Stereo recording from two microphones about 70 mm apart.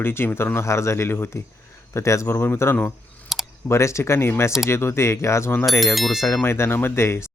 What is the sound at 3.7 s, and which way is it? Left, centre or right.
Speech, left.